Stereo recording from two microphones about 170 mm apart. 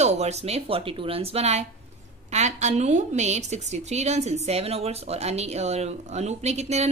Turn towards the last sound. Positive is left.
turn(degrees=-40)  # may be behind; listen again after turning